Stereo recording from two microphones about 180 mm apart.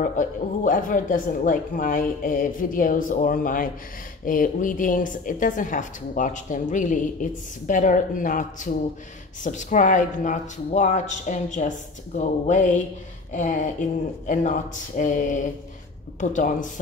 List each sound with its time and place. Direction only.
0.0 s a woman's voice: 45° left (ahead or behind)